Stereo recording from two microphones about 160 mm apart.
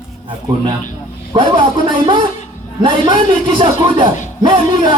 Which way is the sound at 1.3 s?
30° right (ahead or behind).